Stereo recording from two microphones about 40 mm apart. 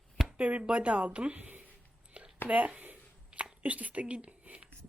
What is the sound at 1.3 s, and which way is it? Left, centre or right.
Speech, right.